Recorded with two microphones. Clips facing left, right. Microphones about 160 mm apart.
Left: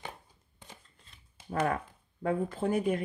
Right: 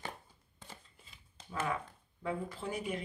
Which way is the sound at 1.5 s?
55° left (ahead or behind).